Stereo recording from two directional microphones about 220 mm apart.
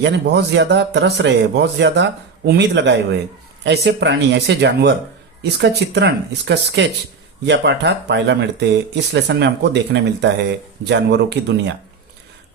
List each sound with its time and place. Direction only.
0.0 s speech: 50° right (ahead or behind)